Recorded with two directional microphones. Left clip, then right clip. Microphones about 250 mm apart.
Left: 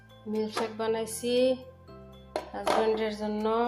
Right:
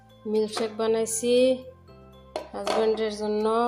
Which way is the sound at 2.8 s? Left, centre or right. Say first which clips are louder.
Right 6 dB; centre.